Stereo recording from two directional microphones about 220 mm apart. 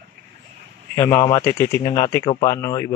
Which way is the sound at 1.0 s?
15° left (ahead or behind).